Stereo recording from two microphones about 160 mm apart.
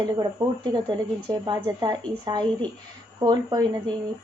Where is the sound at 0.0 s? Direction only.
25° right (ahead or behind).